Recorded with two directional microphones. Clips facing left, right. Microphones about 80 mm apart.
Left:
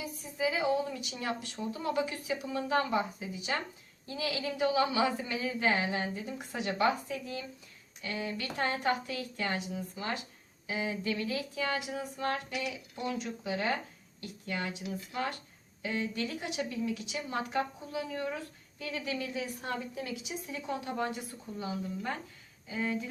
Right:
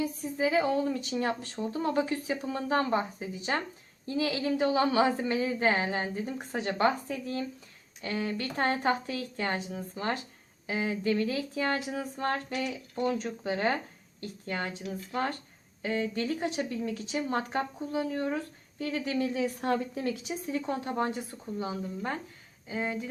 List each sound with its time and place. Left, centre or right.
0.0 s speech: right